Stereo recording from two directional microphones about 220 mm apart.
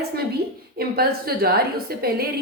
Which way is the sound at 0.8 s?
45° right (ahead or behind).